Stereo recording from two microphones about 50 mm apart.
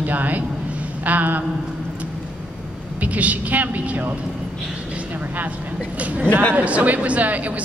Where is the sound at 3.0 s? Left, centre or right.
Right.